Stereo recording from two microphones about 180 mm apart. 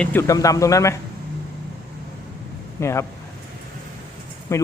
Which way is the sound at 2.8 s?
15° left (ahead or behind).